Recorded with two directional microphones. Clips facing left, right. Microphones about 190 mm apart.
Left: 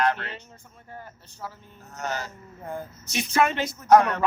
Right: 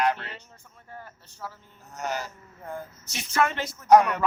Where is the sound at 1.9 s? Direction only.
15° right (ahead or behind).